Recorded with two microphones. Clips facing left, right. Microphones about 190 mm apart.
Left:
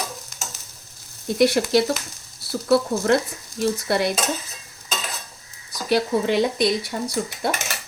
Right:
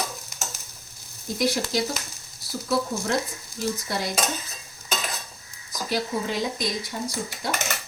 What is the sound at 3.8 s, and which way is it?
Speech, 65° left (ahead or behind).